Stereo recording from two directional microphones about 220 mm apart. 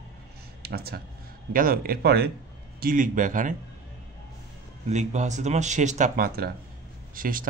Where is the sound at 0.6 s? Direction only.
45° right (ahead or behind).